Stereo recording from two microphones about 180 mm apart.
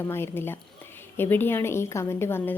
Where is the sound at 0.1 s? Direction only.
15° left (ahead or behind).